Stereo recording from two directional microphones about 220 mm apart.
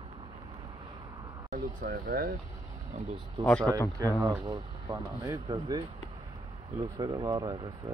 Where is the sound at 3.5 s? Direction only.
5° left (ahead or behind).